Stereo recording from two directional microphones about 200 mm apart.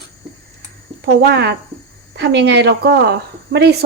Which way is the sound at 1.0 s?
55° right (ahead or behind).